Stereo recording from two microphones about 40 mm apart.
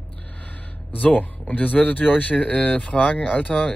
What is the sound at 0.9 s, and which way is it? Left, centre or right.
Speech, left.